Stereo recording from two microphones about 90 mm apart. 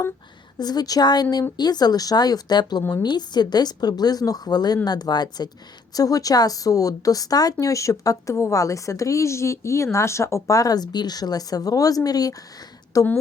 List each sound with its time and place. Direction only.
0.6 s a woman's voice: 50° left (ahead or behind)